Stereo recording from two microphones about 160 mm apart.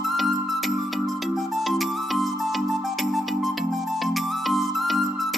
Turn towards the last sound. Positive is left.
turn(degrees=0)  # may be behind; listen again after turning